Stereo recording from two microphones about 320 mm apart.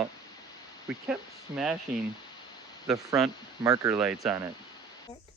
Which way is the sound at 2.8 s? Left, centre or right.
Centre.